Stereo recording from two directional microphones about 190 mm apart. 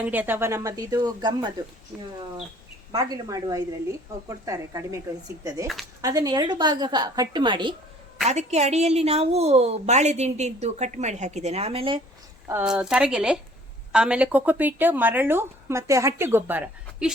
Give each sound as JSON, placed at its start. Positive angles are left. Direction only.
{"t": 0.0, "sound": "a woman's voice", "side_deg": -10}
{"t": 1.9, "sound": "speech", "side_deg": -5}
{"t": 2.9, "sound": "a woman's voice", "side_deg": -20}
{"t": 8.3, "sound": "a woman's voice", "side_deg": -35}
{"t": 12.5, "sound": "a woman's voice", "side_deg": -10}